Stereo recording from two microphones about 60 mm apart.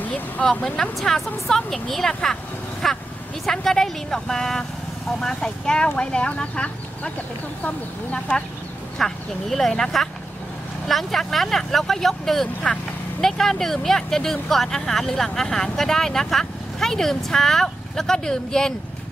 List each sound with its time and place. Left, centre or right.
0.0 s speech: centre
8.9 s speech: centre